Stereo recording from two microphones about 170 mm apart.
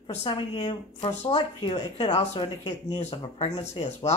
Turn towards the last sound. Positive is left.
turn(degrees=40)  # may be behind; listen again after turning